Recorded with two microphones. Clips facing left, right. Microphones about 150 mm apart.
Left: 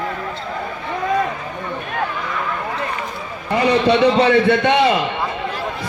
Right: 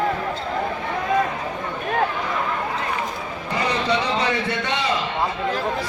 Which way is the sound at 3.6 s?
65° left (ahead or behind).